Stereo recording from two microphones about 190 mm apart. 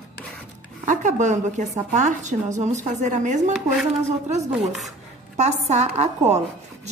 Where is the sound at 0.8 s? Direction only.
40° right (ahead or behind).